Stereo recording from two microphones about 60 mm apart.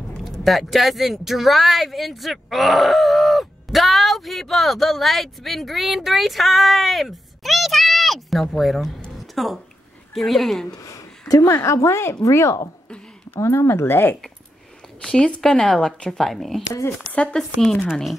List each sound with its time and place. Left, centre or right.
0.2 s speech: centre
10.7 s a woman's voice: left
15.0 s speech: centre
17.1 s speech: centre
17.4 s speech: centre